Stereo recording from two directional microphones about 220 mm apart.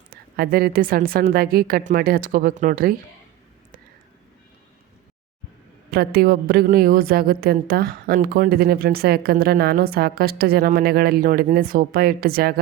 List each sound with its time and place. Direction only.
0.1 s a woman's voice: 45° right (ahead or behind)
5.9 s a woman's voice: 45° right (ahead or behind)